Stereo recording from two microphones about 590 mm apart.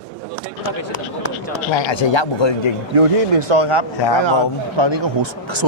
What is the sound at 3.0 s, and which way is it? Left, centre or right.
Speech, right.